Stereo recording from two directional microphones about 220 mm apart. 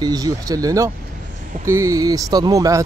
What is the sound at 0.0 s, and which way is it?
Speech, 15° right (ahead or behind).